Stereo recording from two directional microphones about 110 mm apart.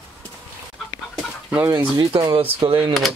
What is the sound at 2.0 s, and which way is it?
Speech, 45° right (ahead or behind).